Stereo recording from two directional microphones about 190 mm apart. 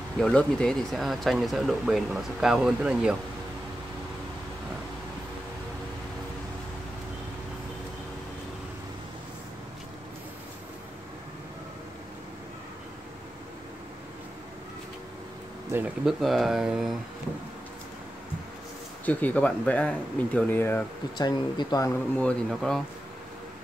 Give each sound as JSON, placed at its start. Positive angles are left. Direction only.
{"t": 0.2, "sound": "speech", "side_deg": 5}
{"t": 15.7, "sound": "speech", "side_deg": -5}
{"t": 19.0, "sound": "speech", "side_deg": 10}
{"t": 21.2, "sound": "speech", "side_deg": 20}
{"t": 22.2, "sound": "speech", "side_deg": 5}